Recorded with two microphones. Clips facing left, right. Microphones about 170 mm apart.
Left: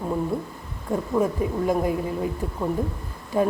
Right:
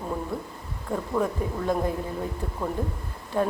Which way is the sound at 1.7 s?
10° left (ahead or behind).